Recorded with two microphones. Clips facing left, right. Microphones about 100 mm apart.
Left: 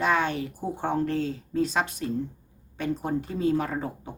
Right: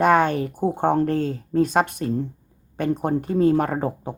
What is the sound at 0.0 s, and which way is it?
Speech, 50° right (ahead or behind).